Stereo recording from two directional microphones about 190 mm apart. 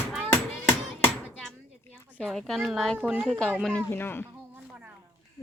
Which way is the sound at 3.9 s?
10° left (ahead or behind).